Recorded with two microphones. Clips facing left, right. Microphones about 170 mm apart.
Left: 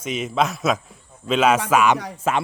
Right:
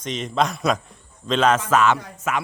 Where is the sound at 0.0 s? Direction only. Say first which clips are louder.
Left 1 dB; 5° left (ahead or behind).